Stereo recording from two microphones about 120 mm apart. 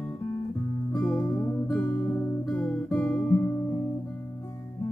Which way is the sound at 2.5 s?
5° left (ahead or behind).